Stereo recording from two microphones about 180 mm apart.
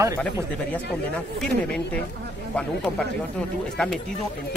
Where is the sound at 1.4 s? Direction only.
5° left (ahead or behind).